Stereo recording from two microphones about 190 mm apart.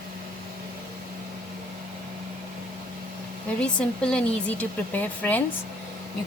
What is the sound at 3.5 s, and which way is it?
A woman's voice, 5° left (ahead or behind).